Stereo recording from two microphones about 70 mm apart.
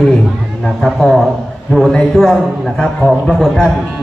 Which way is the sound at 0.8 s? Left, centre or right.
Centre.